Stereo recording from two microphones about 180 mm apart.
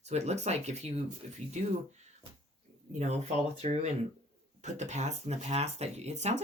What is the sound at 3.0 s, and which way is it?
Speech, 40° right (ahead or behind).